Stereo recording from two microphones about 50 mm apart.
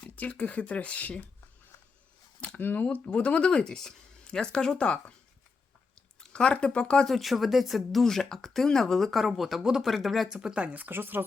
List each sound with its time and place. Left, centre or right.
0.3 s speech: left
2.6 s speech: left
2.8 s speech: left
6.1 s speech: centre
7.1 s speech: centre
8.0 s speech: centre
10.2 s speech: centre
10.5 s speech: right
10.9 s speech: right